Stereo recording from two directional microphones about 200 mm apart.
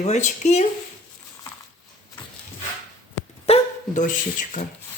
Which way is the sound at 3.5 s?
30° left (ahead or behind).